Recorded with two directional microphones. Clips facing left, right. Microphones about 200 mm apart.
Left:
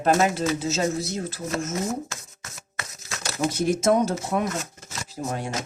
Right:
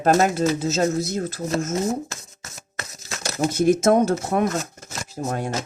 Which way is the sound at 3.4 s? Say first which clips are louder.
Right 4 dB; 50° right (ahead or behind).